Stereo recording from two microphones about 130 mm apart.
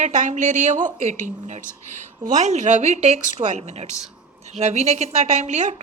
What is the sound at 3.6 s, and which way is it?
A woman's voice, 60° right (ahead or behind).